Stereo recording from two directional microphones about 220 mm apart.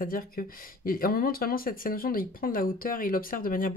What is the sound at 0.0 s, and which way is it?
Speech, 40° left (ahead or behind).